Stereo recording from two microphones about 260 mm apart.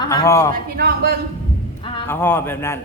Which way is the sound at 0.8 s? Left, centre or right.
Right.